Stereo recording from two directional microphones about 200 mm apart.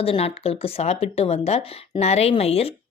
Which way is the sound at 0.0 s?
30° left (ahead or behind).